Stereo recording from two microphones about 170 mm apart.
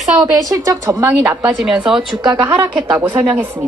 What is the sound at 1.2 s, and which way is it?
Speech, 5° right (ahead or behind).